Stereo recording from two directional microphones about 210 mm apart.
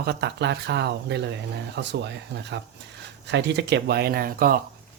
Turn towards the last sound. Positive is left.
turn(degrees=-45)  # may be behind; listen again after turning